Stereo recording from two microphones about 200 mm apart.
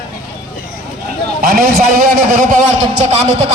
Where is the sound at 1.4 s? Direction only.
45° right (ahead or behind).